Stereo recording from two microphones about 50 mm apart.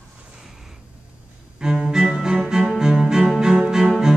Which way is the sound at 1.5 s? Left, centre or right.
Centre.